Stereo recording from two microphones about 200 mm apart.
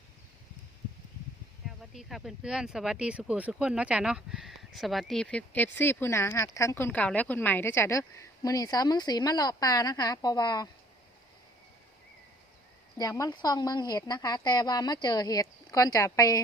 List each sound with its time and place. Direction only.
1.6 s speech: centre (ahead or behind); by 10.7 s 20° left (ahead or behind)
13.0 s a woman's voice: 20° left (ahead or behind)